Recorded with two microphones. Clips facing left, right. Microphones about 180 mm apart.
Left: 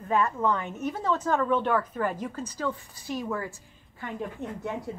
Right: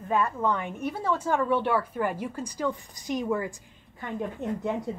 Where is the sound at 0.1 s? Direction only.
15° right (ahead or behind).